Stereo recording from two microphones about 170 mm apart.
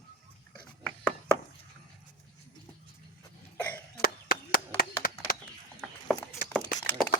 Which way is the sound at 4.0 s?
60° left (ahead or behind).